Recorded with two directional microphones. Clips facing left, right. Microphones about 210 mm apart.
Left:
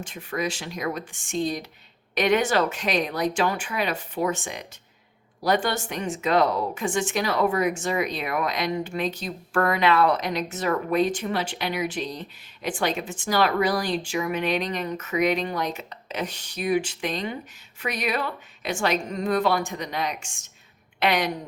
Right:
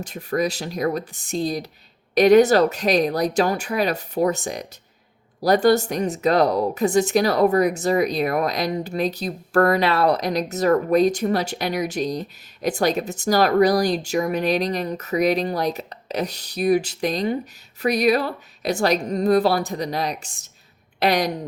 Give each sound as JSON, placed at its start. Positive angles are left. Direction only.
{"t": 0.0, "sound": "speech", "side_deg": -40}